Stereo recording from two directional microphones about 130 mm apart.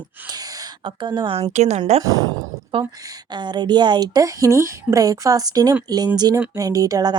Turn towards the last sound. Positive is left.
turn(degrees=-30)  # may be behind; listen again after turning